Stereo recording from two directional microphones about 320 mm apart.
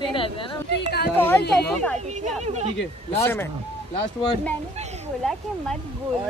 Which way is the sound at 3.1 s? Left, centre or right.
Centre.